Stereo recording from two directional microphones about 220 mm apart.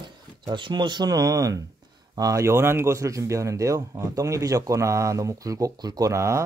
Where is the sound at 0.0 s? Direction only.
20° right (ahead or behind).